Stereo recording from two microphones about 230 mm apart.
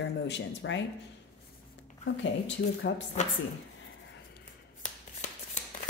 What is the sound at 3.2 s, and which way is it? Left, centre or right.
Speech, left.